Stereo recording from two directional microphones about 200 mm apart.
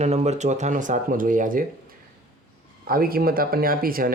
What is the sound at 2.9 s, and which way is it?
Speech, 45° right (ahead or behind).